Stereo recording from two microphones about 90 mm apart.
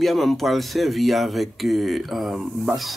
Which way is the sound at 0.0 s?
Centre (ahead or behind).